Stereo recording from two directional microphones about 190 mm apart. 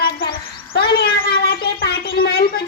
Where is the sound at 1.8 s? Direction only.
80° left.